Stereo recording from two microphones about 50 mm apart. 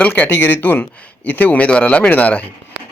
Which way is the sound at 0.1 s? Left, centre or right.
Left.